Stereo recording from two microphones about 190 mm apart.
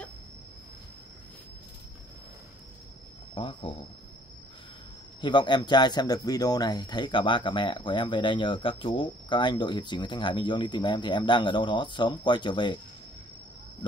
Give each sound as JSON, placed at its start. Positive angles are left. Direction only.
{"t": 3.3, "sound": "speech", "side_deg": 30}
{"t": 5.2, "sound": "speech", "side_deg": 25}